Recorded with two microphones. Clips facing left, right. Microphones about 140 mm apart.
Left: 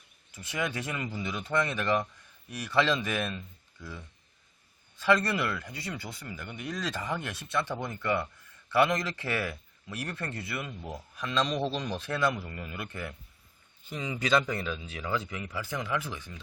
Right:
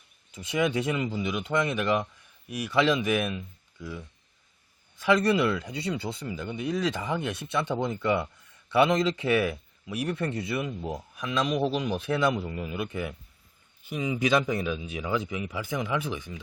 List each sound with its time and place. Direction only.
0.3 s speech: 20° right (ahead or behind)